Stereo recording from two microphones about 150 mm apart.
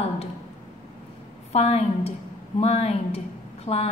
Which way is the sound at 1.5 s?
45° left (ahead or behind).